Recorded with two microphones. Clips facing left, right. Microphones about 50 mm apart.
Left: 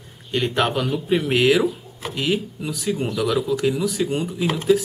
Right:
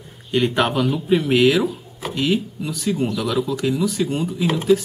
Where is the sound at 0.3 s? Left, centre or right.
Centre.